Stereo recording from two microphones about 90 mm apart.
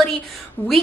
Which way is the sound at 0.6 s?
20° left (ahead or behind).